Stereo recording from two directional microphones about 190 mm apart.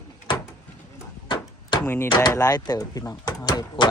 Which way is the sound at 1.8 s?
10° left (ahead or behind).